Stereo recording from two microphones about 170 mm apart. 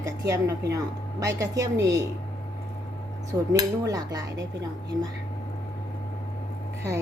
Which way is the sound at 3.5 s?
20° right (ahead or behind).